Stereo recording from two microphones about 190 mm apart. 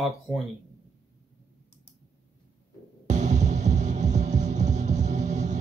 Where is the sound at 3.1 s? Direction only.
40° right (ahead or behind).